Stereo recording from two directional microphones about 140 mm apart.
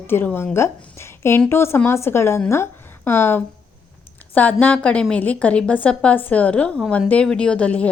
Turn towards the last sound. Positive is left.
turn(degrees=10)  # may be behind; listen again after turning